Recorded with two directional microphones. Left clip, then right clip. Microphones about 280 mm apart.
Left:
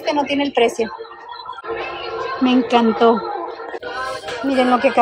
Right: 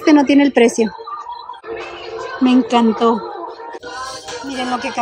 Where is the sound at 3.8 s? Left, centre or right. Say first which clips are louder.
Left 4 dB; centre.